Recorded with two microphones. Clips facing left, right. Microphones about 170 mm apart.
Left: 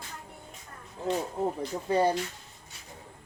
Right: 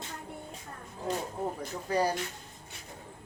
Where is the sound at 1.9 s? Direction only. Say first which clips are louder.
Left 4 dB; 25° left (ahead or behind).